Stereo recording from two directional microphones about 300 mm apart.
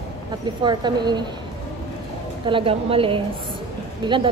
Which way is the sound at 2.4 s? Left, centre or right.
Centre.